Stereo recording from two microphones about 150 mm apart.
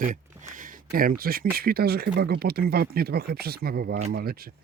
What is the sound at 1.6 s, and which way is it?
Speech, 90° right.